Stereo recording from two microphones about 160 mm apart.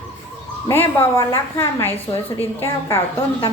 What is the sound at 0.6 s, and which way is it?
A woman's voice, 15° left (ahead or behind).